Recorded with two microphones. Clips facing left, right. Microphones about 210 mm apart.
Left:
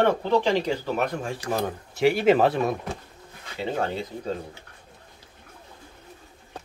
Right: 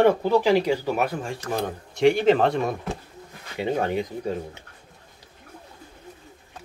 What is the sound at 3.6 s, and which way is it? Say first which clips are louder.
Speech: right 3 dB; 15° right (ahead or behind).